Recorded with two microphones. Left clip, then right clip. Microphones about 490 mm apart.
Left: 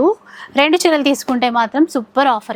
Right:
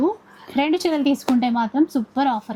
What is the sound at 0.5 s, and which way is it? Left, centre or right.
A woman's voice, left.